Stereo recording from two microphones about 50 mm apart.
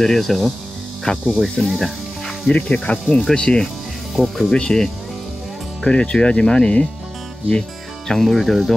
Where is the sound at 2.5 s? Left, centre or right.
Left.